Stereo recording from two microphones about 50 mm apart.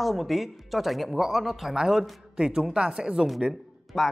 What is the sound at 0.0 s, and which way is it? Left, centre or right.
Speech, centre.